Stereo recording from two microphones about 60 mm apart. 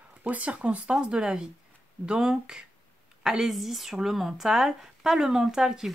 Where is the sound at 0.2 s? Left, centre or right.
Right.